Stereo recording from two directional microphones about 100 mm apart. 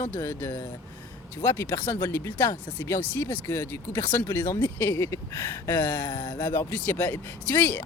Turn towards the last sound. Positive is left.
turn(degrees=20)  # may be behind; listen again after turning